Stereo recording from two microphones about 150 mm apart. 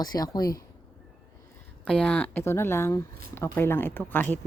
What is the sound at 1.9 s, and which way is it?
Speech, 5° left (ahead or behind).